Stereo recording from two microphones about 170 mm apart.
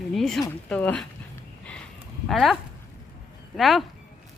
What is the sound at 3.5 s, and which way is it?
Speech, centre (ahead or behind).